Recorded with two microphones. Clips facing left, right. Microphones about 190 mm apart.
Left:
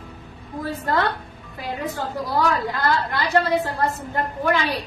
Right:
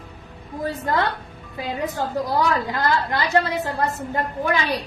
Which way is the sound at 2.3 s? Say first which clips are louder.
Left 1 dB; 15° right (ahead or behind).